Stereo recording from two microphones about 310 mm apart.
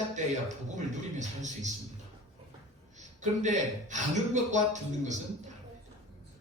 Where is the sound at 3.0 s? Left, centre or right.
Right.